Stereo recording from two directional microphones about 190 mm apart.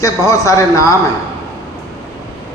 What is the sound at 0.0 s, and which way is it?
Speech, 15° left (ahead or behind).